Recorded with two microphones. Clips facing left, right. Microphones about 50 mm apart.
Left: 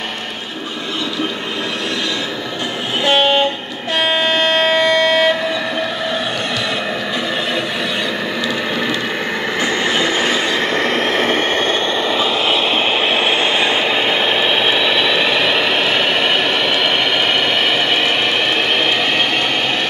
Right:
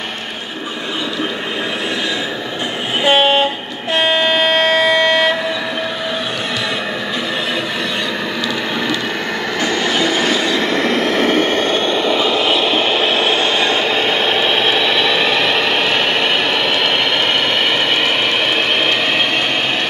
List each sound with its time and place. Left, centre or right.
3.0 s train: centre
4.0 s music: centre
9.6 s train: left; by 16.3 s centre